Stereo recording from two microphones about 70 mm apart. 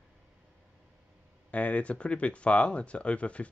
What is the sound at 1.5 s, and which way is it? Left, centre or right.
Speech, centre.